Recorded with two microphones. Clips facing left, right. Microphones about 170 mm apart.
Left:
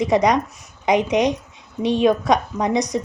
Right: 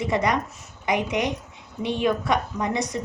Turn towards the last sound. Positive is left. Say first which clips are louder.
# left 6 dB
turn(degrees=20)  # may be behind; listen again after turning